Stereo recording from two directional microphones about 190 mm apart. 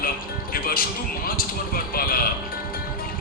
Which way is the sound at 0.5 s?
50° left (ahead or behind).